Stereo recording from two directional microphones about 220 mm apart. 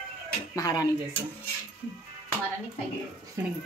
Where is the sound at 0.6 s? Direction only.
15° left (ahead or behind).